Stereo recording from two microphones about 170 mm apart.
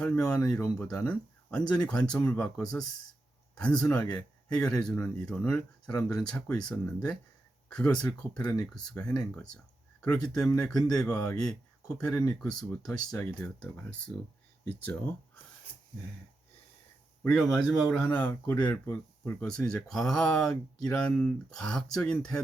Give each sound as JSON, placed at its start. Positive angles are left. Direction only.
{"t": 0.3, "sound": "speech", "side_deg": 5}
{"t": 17.2, "sound": "speech", "side_deg": 5}